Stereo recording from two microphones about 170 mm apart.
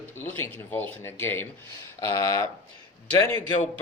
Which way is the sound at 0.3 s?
10° left (ahead or behind).